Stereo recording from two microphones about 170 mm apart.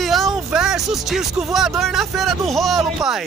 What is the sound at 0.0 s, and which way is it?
Speech, centre (ahead or behind).